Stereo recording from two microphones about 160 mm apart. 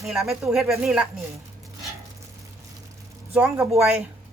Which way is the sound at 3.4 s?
15° right (ahead or behind).